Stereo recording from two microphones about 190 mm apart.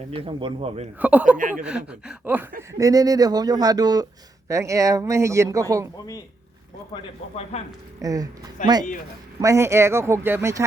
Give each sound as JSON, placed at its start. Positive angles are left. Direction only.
{"t": 0.1, "sound": "speech", "side_deg": -25}
{"t": 0.9, "sound": "speech", "side_deg": -10}
{"t": 1.4, "sound": "speech", "side_deg": -45}
{"t": 1.6, "sound": "speech", "side_deg": -5}
{"t": 6.9, "sound": "speech", "side_deg": 35}
{"t": 8.0, "sound": "speech", "side_deg": -20}